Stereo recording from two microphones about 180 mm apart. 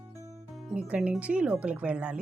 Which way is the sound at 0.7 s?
5° right (ahead or behind).